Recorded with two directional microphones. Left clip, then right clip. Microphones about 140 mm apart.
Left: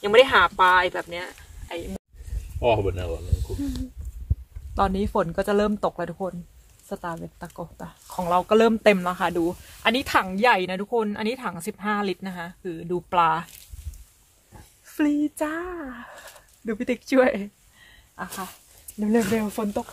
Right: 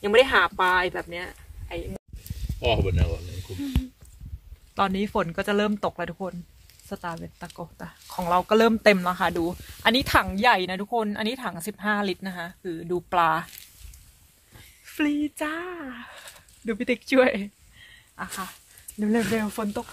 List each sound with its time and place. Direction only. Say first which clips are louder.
0.0 s speech: left 2 dB; 10° right (ahead or behind)
3.5 s speech: left 3 dB; 15° right (ahead or behind)
4.7 s speech: left 2 dB; 10° right (ahead or behind)
14.9 s speech: left 2 dB; 10° right (ahead or behind)
18.9 s speech: left 2 dB; 10° right (ahead or behind)